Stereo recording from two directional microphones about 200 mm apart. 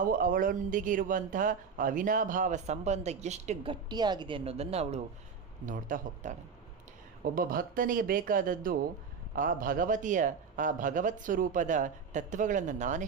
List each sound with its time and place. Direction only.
0.0 s speech: 45° right (ahead or behind)
7.3 s a man's voice: 45° right (ahead or behind)